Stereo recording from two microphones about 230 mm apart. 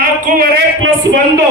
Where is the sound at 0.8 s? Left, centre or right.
Right.